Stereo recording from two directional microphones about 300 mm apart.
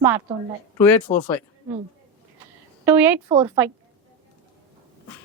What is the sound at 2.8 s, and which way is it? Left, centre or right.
Speech, centre.